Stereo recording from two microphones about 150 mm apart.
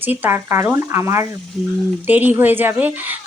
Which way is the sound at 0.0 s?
10° right (ahead or behind).